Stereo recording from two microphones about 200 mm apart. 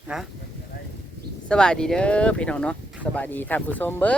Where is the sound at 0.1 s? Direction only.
5° right (ahead or behind).